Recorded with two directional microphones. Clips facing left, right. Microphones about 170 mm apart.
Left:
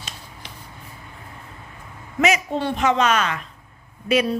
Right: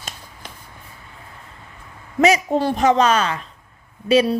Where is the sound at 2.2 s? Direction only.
35° right (ahead or behind).